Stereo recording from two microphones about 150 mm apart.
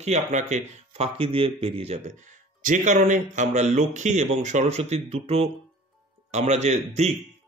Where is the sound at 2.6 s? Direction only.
60° right (ahead or behind).